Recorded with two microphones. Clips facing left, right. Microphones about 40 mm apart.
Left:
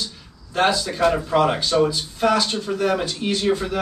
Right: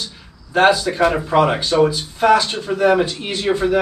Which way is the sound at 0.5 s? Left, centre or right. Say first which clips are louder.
Right 6 dB; right.